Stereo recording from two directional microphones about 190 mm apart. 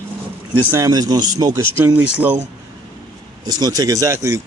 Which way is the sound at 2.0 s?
5° right (ahead or behind).